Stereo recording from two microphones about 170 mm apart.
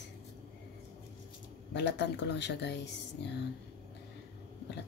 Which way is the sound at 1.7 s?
90° left.